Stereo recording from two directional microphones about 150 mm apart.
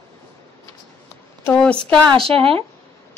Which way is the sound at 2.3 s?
40° right (ahead or behind).